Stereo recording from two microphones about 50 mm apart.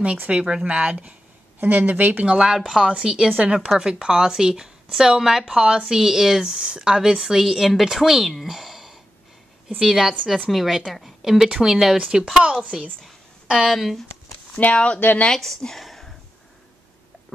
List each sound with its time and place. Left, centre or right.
0.0 s speech: right
1.6 s speech: right
2.2 s a woman's voice: centre
8.3 s a sound: centre
9.8 s a woman's voice: centre
12.0 s speech: centre
13.0 s a sound: centre
14.5 s speech: left
15.2 s speech: centre